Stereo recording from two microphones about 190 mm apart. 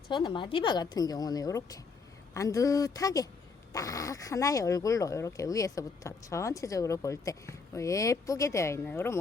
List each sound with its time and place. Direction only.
0.1 s speech: 25° left (ahead or behind)